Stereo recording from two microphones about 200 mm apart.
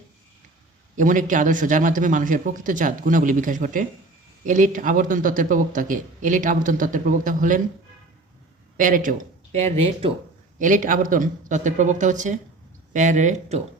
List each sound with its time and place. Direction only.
0.9 s speech: 40° right (ahead or behind)
8.8 s speech: 40° right (ahead or behind)
10.6 s speech: 40° right (ahead or behind)